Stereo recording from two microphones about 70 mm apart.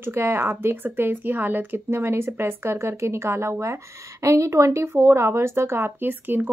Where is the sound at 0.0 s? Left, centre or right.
Right.